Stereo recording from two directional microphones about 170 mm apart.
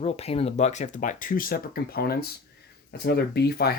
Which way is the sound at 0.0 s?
35° left (ahead or behind).